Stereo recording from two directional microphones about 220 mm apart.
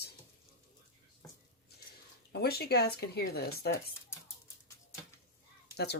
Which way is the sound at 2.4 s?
45° left (ahead or behind).